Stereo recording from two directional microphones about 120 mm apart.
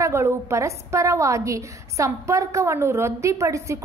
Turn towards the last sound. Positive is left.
turn(degrees=-25)  # may be behind; listen again after turning